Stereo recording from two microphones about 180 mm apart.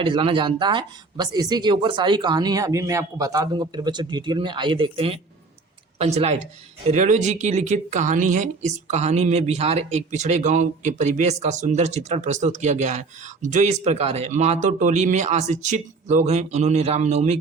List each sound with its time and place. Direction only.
0.0 s speech: 30° right (ahead or behind)